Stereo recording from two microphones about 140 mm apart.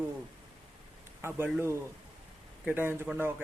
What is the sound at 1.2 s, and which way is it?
A man's voice, 15° right (ahead or behind).